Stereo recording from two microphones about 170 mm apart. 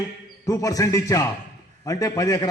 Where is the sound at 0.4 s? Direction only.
20° left (ahead or behind).